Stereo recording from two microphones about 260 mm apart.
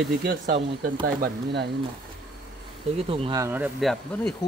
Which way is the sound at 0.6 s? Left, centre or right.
Centre.